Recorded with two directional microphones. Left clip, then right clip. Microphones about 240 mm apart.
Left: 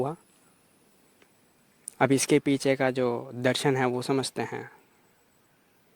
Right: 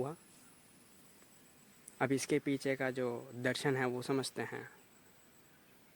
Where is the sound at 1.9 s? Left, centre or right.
Left.